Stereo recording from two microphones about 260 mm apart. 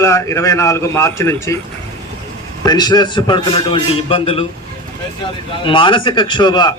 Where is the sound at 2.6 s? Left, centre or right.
Centre.